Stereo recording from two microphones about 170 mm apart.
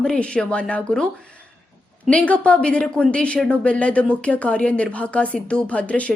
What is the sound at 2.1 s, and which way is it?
A woman's voice, 5° left (ahead or behind).